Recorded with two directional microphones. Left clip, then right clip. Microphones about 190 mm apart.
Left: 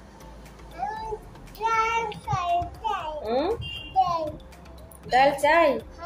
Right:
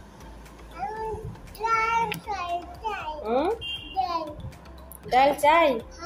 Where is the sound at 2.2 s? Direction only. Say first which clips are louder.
Left 5 dB; 10° left (ahead or behind).